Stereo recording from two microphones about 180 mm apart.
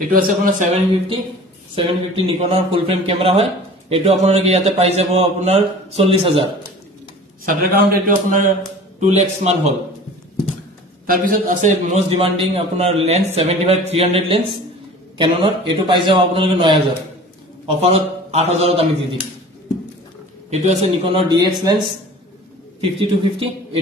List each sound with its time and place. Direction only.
0.1 s a man's voice: 50° right (ahead or behind)
1.8 s a man's voice: 30° right (ahead or behind)
7.4 s a man's voice: 50° right (ahead or behind)
11.1 s a man's voice: 50° right (ahead or behind); by 16.8 s 25° right (ahead or behind)
17.8 s a man's voice: 35° right (ahead or behind)
20.4 s a man's voice: 35° right (ahead or behind); by 21.8 s 20° right (ahead or behind)
22.8 s a man's voice: 30° right (ahead or behind)